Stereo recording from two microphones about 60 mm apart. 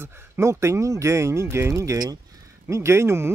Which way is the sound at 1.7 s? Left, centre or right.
Right.